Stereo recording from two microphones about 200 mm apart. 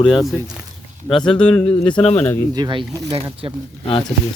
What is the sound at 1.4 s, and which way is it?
Speech, 5° left (ahead or behind).